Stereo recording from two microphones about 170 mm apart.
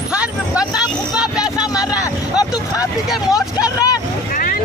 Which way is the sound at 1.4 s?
20° left (ahead or behind).